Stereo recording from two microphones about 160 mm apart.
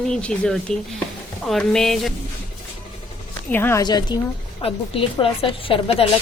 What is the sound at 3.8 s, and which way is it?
A woman's voice, 25° left (ahead or behind).